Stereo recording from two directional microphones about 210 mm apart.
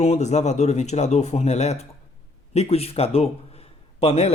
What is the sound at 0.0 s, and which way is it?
A man's voice, 30° left (ahead or behind).